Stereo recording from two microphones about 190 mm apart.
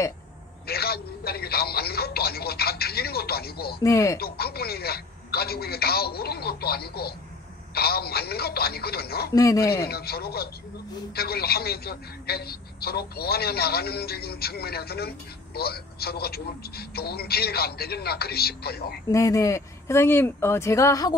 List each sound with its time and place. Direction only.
0.7 s a man's voice: 55° left (ahead or behind)
3.8 s speech: 15° left (ahead or behind)
4.2 s a man's voice: 55° left (ahead or behind)
9.3 s speech: 15° left (ahead or behind)
9.8 s a man's voice: 55° left (ahead or behind)
19.1 s speech: 15° left (ahead or behind)